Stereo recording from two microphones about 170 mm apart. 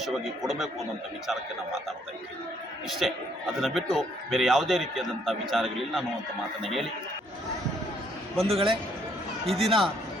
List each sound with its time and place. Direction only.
0.0 s a man's voice: centre (ahead or behind)
2.9 s a man's voice: centre (ahead or behind)
8.4 s a man's voice: 35° right (ahead or behind)
9.5 s a man's voice: centre (ahead or behind)